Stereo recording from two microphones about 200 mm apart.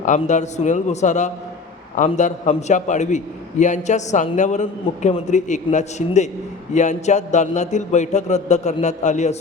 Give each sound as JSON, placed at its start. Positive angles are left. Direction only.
{"t": 0.0, "sound": "a man's voice", "side_deg": 40}